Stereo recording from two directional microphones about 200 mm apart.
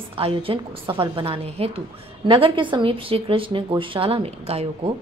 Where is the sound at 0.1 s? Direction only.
25° right (ahead or behind).